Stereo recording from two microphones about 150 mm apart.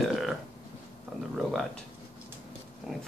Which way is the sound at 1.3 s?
Centre (ahead or behind).